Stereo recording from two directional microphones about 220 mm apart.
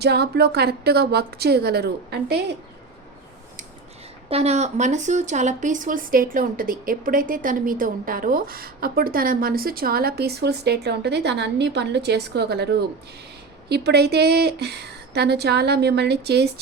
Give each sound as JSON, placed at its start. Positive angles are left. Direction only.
{"t": 0.0, "sound": "speech", "side_deg": -50}
{"t": 4.3, "sound": "speech", "side_deg": -30}